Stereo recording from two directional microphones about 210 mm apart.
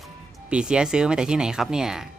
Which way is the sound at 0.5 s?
5° right (ahead or behind).